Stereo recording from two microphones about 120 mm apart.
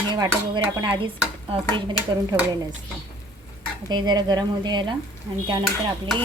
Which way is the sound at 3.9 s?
35° right (ahead or behind).